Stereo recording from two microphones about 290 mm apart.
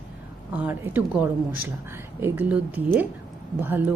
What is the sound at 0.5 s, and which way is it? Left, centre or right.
A woman's voice, centre.